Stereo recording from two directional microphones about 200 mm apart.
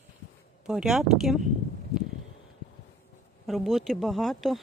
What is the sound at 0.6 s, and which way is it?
Speech, 5° right (ahead or behind).